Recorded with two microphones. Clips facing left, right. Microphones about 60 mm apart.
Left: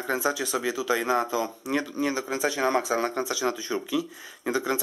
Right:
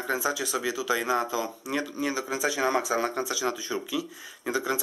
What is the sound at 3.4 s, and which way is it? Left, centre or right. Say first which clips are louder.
Speech: left 2 dB; centre.